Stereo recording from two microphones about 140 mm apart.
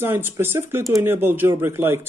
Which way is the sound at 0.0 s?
15° right (ahead or behind).